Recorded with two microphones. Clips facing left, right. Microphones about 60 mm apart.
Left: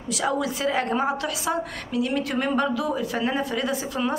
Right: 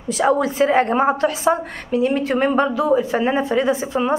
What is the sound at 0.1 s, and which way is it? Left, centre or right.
A woman's voice, right.